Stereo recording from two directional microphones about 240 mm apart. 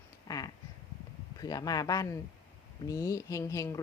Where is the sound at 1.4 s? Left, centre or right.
Centre.